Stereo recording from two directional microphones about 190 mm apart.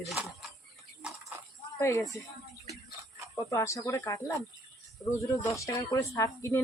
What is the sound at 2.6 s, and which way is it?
Music, 15° right (ahead or behind).